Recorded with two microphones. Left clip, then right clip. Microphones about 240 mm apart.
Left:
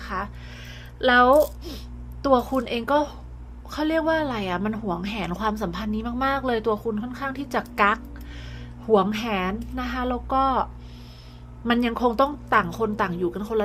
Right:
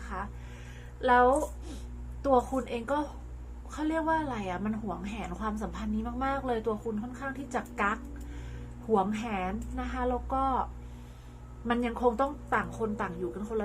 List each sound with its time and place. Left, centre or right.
0.1 s music: left
1.0 s a woman's voice: left
11.7 s a woman's voice: left